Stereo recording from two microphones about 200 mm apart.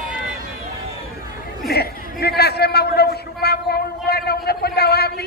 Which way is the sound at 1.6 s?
50° left (ahead or behind).